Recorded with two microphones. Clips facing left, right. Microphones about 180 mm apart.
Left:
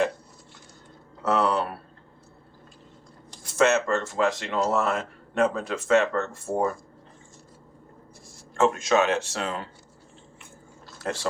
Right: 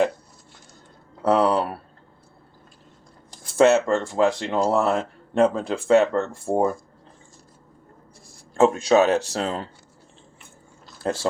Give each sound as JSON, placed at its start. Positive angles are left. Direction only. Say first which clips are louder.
{"t": 1.2, "sound": "speech", "louder": "right 4 dB", "side_deg": -30}
{"t": 3.6, "sound": "speech", "louder": "right 5 dB", "side_deg": -30}
{"t": 8.5, "sound": "speech", "louder": "right 5 dB", "side_deg": -35}
{"t": 11.0, "sound": "speech", "louder": "right 5 dB", "side_deg": -30}